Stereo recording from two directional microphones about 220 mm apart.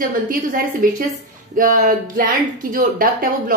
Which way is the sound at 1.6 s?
40° right (ahead or behind).